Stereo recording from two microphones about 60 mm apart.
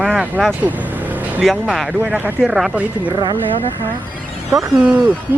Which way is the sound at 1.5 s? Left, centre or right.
Centre.